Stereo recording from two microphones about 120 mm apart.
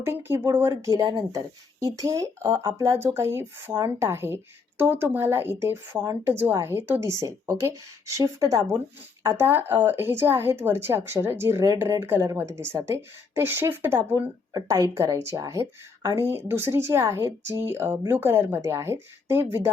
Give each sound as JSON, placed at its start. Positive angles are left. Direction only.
{"t": 0.0, "sound": "speech", "side_deg": -20}